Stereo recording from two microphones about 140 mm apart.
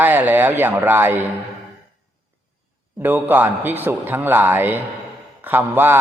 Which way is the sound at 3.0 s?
15° right (ahead or behind).